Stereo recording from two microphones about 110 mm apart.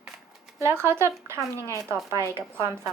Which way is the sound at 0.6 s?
25° right (ahead or behind).